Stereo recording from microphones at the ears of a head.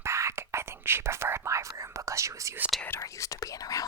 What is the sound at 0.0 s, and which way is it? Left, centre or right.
Whispering, right.